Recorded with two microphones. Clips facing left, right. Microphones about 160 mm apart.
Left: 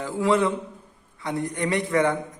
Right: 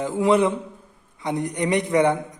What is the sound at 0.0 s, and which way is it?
A man's voice, 20° right (ahead or behind).